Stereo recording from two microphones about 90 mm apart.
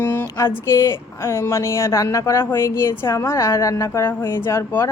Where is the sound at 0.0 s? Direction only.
25° left (ahead or behind).